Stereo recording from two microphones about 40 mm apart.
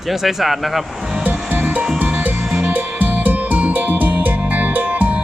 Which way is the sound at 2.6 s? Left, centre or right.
Right.